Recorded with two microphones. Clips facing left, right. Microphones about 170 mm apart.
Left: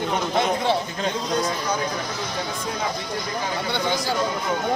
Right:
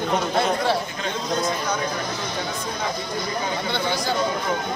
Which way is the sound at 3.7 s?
10° left (ahead or behind).